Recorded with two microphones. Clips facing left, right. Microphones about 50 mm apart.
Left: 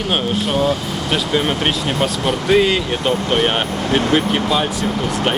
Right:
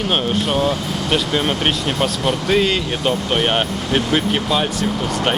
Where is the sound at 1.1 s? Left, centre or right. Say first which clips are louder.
Left 1 dB; centre.